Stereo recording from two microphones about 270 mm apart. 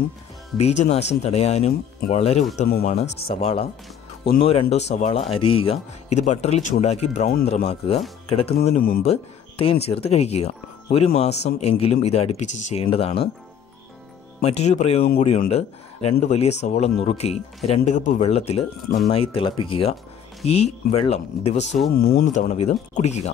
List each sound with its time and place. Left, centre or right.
0.6 s speech: left
8.6 s speech: left
14.4 s speech: left